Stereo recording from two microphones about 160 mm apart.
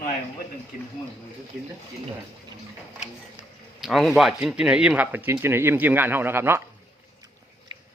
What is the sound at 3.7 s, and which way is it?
Speech, centre (ahead or behind).